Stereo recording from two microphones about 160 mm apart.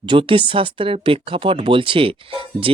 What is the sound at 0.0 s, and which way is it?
Speech, 30° right (ahead or behind).